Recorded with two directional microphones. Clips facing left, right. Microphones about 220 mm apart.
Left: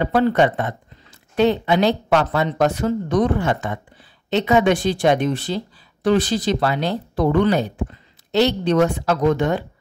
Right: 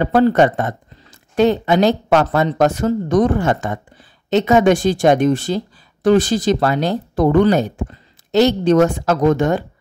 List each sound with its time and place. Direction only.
0.0 s speech: 45° right (ahead or behind)